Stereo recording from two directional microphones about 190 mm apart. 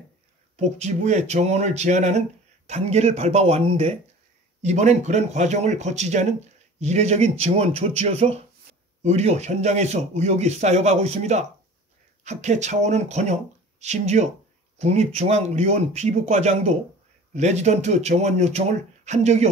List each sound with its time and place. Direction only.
0.6 s speech: 35° right (ahead or behind)